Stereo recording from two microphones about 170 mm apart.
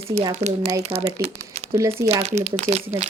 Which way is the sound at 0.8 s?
35° right (ahead or behind).